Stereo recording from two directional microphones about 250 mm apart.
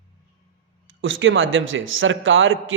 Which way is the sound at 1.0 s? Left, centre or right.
Right.